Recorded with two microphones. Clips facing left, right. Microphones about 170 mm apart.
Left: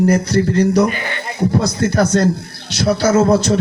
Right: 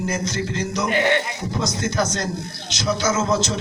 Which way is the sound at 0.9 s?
70° right (ahead or behind).